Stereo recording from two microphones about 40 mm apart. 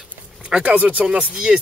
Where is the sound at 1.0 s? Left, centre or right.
Centre.